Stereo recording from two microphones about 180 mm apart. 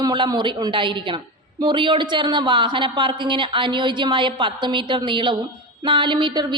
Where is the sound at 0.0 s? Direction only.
25° right (ahead or behind).